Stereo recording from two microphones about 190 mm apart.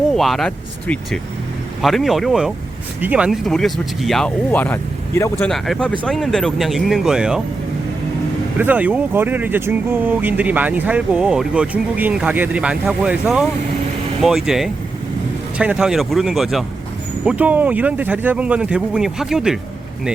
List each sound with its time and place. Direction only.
0.1 s speech: centre (ahead or behind)
5.5 s speech: centre (ahead or behind)
8.5 s speech: 10° right (ahead or behind)